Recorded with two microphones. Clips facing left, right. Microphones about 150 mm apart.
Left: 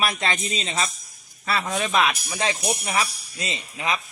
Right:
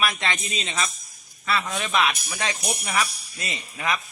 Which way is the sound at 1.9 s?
25° left (ahead or behind).